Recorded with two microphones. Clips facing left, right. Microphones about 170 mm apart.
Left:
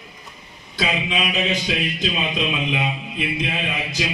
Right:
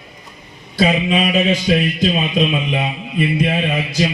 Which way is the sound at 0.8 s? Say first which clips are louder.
Right 8 dB; 45° right (ahead or behind).